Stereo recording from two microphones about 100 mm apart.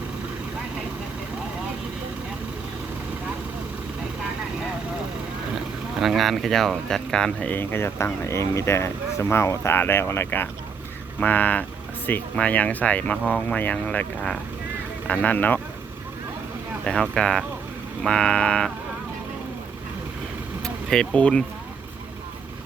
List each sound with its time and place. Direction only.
6.0 s speech: centre (ahead or behind); by 15.6 s 15° left (ahead or behind)
16.8 s speech: 5° left (ahead or behind)
20.6 s speech: 5° left (ahead or behind)